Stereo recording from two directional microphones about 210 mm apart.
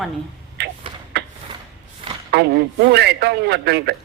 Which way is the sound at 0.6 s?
50° right (ahead or behind).